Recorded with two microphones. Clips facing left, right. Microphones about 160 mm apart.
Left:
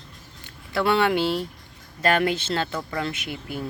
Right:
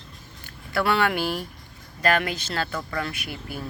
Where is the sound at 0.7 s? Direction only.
20° left (ahead or behind).